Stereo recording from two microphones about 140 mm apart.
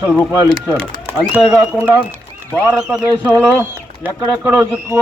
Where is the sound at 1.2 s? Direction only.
5° right (ahead or behind).